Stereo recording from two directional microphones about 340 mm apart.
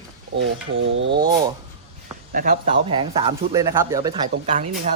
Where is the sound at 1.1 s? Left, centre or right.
Centre.